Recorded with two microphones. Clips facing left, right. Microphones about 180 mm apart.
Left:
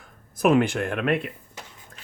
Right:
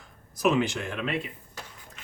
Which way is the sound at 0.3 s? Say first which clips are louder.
Left 5 dB; 55° left (ahead or behind).